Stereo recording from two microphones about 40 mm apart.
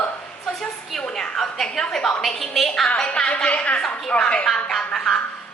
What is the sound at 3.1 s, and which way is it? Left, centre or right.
Speech, left.